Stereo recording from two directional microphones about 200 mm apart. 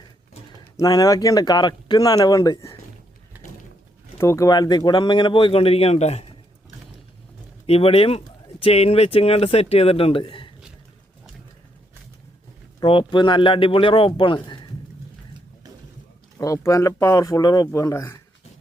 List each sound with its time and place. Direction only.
0.8 s speech: 20° left (ahead or behind)
4.2 s speech: 15° left (ahead or behind); by 6.2 s 30° left (ahead or behind)
7.7 s speech: 30° left (ahead or behind)
12.8 s speech: 25° left (ahead or behind)
16.4 s speech: 15° left (ahead or behind)